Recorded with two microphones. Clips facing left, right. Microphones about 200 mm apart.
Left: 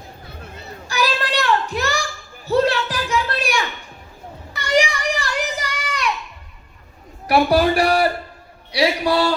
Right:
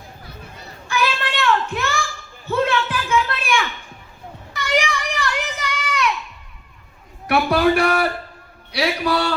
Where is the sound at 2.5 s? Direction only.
40° left (ahead or behind).